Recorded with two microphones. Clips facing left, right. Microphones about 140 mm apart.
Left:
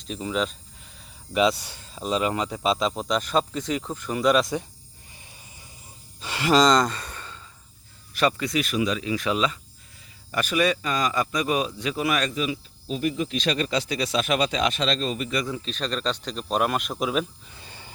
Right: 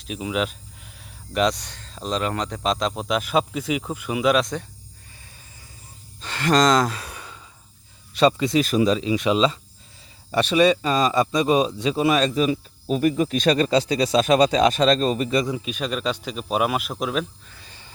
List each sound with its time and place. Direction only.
0.0 s speech: 5° right (ahead or behind)
0.9 s speech: 5° left (ahead or behind)
6.1 s gasp: 10° left (ahead or behind); by 7.4 s 10° right (ahead or behind)
8.1 s speech: 20° right (ahead or behind)
9.0 s speech: 20° right (ahead or behind)
12.4 s speech: 45° right (ahead or behind)
15.4 s speech: 15° right (ahead or behind); by 17.2 s centre (ahead or behind)
17.5 s a sound: 25° left (ahead or behind)